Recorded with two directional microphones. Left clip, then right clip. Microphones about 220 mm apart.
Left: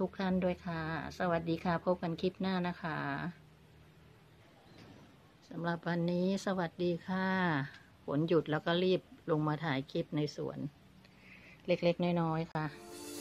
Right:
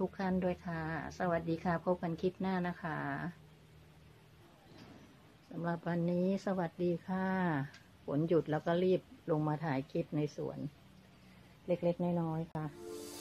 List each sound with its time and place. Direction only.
0.0 s a woman's voice: centre (ahead or behind)
5.5 s a woman's voice: centre (ahead or behind)
11.6 s a woman's voice: 10° left (ahead or behind)